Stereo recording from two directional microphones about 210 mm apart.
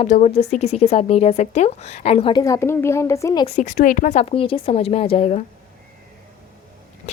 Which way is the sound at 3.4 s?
35° left (ahead or behind).